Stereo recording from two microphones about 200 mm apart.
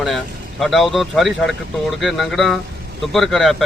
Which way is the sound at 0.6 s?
Centre (ahead or behind).